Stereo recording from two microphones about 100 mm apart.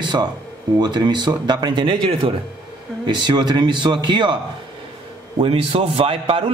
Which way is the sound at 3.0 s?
45° right (ahead or behind).